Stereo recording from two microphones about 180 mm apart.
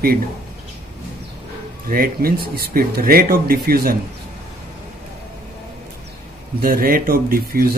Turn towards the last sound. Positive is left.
turn(degrees=-55)  # may be behind; listen again after turning